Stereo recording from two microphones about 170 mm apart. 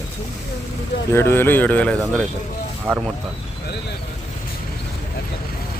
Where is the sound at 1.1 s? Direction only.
15° left (ahead or behind).